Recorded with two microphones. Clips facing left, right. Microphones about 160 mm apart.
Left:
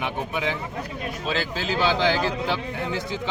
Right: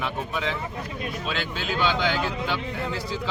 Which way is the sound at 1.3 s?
35° left (ahead or behind).